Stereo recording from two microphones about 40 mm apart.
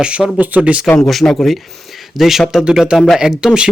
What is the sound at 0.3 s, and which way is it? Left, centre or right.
Speech, right.